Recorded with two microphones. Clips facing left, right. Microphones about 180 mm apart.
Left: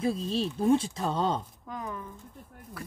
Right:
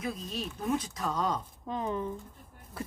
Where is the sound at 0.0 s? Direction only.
30° left (ahead or behind).